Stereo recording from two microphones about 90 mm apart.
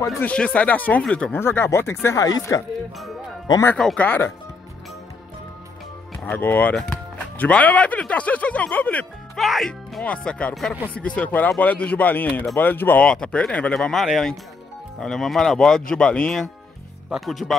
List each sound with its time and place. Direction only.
0.2 s speech: 15° left (ahead or behind)
1.3 s speech: 25° left (ahead or behind)
2.1 s speech: 40° left (ahead or behind)
3.7 s speech: 10° left (ahead or behind)
6.2 s speech: 20° left (ahead or behind)
6.7 s speech: 10° left (ahead or behind)
9.3 s speech: centre (ahead or behind)
10.0 s speech: 10° left (ahead or behind)
10.5 s speech: centre (ahead or behind)
11.0 s speech: 15° left (ahead or behind)
13.0 s speech: 10° left (ahead or behind)